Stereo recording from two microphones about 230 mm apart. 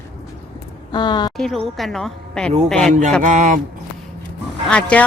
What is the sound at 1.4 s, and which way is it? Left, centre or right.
Speech, centre.